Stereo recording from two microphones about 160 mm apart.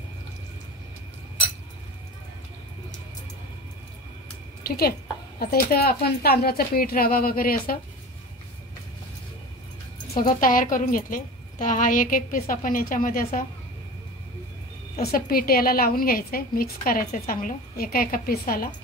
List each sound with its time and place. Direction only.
4.6 s speech: 70° left (ahead or behind)
10.1 s a woman's voice: 60° left (ahead or behind)
15.0 s a woman's voice: 70° left (ahead or behind)